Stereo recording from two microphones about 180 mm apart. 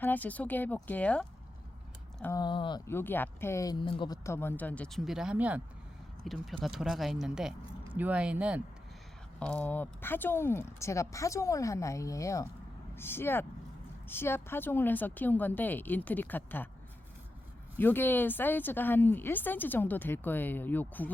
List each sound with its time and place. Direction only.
0.0 s speech: 10° left (ahead or behind)
2.3 s speech: 25° left (ahead or behind)
2.8 s speech: 10° left (ahead or behind); by 8.6 s 5° right (ahead or behind)
9.4 s speech: 5° left (ahead or behind)
17.7 s speech: 10° left (ahead or behind)